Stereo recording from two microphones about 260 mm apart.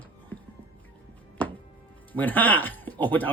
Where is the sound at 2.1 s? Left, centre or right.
Centre.